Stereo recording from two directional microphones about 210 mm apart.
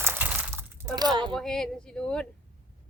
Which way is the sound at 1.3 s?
5° left (ahead or behind).